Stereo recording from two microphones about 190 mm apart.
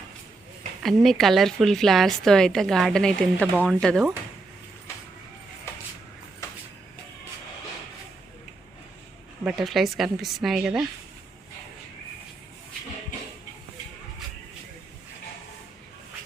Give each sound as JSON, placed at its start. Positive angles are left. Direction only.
{"t": 0.8, "sound": "a woman's voice", "side_deg": 0}
{"t": 9.4, "sound": "a woman's voice", "side_deg": -5}